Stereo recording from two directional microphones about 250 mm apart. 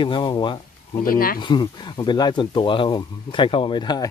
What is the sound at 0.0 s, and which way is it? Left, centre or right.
Speech, centre.